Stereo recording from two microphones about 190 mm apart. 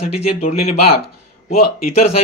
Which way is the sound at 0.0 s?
35° left (ahead or behind).